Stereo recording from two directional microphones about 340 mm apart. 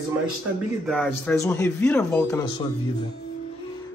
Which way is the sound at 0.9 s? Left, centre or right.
Centre.